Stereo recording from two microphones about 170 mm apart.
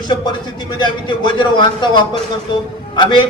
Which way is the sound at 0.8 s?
25° left (ahead or behind).